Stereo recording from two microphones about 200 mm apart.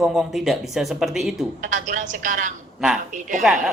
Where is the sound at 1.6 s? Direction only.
40° right (ahead or behind).